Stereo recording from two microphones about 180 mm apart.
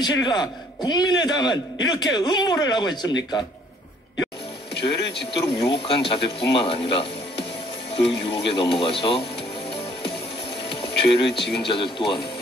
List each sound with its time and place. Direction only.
0.0 s a man's voice: 25° left (ahead or behind)
4.7 s speech: 70° left (ahead or behind)
5.4 s a man's voice: 25° left (ahead or behind)
10.7 s music: 30° left (ahead or behind)
11.6 s a man's voice: 30° left (ahead or behind)